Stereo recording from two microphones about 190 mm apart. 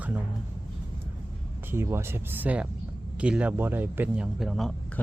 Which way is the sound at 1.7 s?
15° right (ahead or behind).